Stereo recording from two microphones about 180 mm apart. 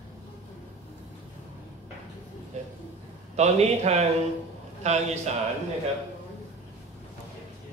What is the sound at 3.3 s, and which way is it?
A man's voice, 35° right (ahead or behind).